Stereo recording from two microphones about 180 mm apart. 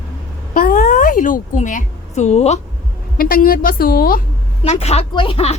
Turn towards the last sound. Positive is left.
turn(degrees=35)  # may be behind; listen again after turning